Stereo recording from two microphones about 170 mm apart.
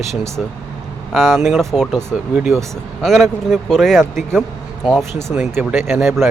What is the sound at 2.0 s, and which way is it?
Speech, 15° right (ahead or behind).